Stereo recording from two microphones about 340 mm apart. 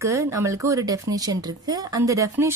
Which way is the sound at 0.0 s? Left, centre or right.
Centre.